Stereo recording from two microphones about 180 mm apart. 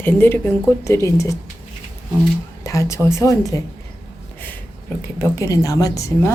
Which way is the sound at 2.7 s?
15° left (ahead or behind).